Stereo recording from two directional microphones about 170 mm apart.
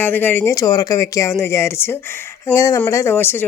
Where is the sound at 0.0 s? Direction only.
10° left (ahead or behind).